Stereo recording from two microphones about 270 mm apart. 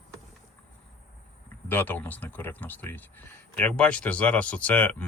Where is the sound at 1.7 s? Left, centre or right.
Centre.